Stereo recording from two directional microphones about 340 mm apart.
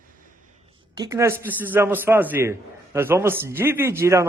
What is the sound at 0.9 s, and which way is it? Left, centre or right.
A man's voice, centre.